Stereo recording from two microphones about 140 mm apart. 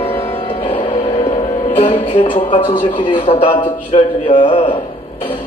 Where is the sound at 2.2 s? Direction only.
65° left (ahead or behind).